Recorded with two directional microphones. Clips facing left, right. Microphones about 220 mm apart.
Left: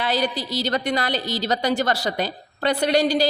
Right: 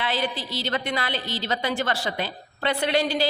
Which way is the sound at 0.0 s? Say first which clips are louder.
Left 4 dB; 40° left (ahead or behind).